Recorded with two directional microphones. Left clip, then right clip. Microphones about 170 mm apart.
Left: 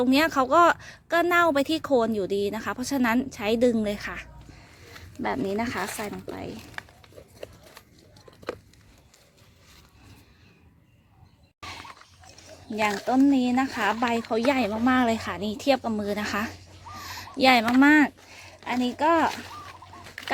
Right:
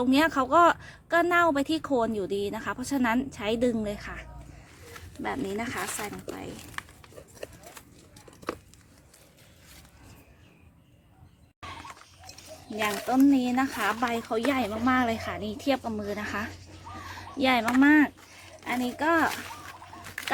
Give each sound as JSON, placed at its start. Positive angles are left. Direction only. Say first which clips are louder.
{"t": 0.0, "sound": "speech", "louder": "left 2 dB", "side_deg": 40}
{"t": 5.2, "sound": "speech", "louder": "left 4 dB", "side_deg": 65}
{"t": 13.1, "sound": "speech", "louder": "even", "side_deg": 60}